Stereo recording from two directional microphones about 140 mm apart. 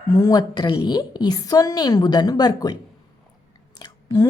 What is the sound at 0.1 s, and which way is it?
A woman's voice, 25° left (ahead or behind).